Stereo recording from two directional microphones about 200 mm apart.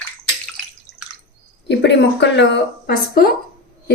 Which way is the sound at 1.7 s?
60° left (ahead or behind).